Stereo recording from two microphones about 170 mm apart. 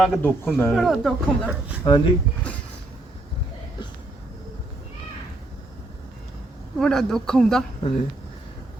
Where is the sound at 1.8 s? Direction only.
25° left (ahead or behind).